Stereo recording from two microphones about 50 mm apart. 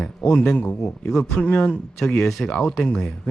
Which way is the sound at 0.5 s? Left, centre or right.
Left.